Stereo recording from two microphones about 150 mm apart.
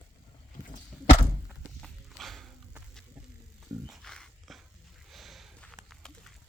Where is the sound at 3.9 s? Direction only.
Centre (ahead or behind).